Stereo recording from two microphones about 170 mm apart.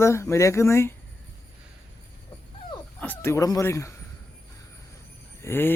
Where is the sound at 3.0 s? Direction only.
10° left (ahead or behind).